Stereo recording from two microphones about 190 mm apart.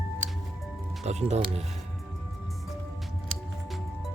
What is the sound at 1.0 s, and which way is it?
Speech, 35° right (ahead or behind).